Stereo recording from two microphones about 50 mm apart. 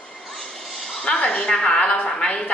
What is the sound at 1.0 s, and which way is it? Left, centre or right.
A woman's voice, left.